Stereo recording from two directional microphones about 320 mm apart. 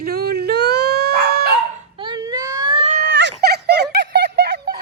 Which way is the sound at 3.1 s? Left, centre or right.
Right.